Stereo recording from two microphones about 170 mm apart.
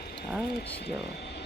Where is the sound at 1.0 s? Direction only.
80° left.